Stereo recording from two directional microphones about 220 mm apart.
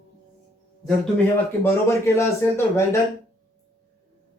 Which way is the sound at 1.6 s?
10° left (ahead or behind).